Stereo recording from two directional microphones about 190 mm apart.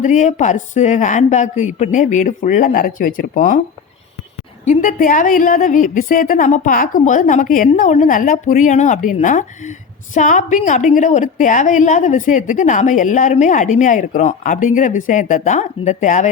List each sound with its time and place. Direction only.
0.0 s a woman's voice: 40° left (ahead or behind)
4.6 s a woman's voice: 40° left (ahead or behind)